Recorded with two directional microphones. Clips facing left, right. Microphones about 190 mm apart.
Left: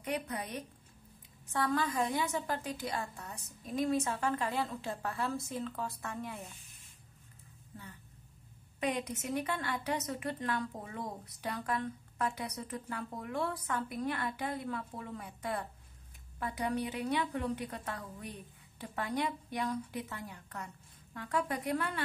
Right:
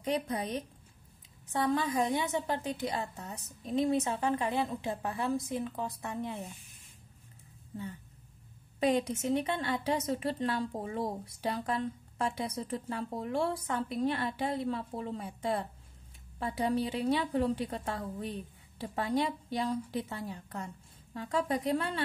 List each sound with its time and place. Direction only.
0.0 s a woman's voice: 30° right (ahead or behind)
8.7 s a woman's voice: 30° right (ahead or behind)